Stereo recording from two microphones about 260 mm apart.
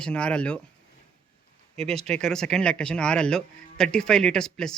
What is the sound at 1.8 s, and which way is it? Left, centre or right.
Speech, centre.